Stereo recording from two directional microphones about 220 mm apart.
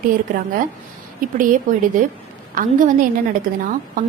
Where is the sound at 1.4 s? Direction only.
35° right (ahead or behind).